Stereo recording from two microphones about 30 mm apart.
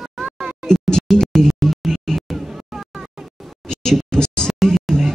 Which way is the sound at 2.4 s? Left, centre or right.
Centre.